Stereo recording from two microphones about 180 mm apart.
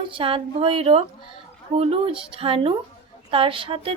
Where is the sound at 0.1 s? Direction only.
30° right (ahead or behind).